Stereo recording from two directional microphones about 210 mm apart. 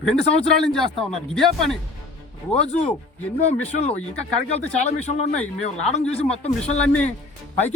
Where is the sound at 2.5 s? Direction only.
30° left (ahead or behind).